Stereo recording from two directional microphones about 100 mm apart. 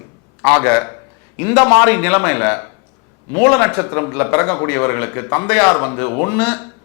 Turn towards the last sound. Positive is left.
turn(degrees=15)  # may be behind; listen again after turning